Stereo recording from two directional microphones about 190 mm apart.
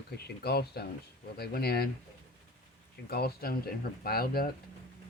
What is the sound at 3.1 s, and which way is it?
Speech, 55° left (ahead or behind).